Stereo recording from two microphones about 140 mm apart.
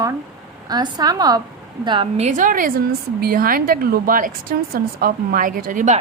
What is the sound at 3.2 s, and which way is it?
A woman's voice, 90° right.